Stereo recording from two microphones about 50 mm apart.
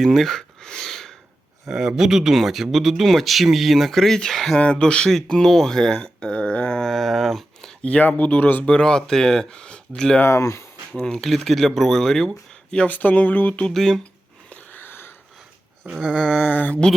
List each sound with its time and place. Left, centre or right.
0.0 s speech: centre
0.6 s a sound: centre
1.6 s speech: centre
4.5 s speech: centre
6.7 s a sound: centre
7.9 s speech: left
8.8 s speech: centre
10.2 s speech: left
11.2 s speech: centre
12.9 s speech: left
13.7 s speech: centre
14.5 s wheeze: left
16.2 s speech: centre
16.5 s speech: left